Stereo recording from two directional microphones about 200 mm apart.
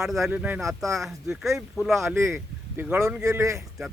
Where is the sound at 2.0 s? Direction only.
15° right (ahead or behind).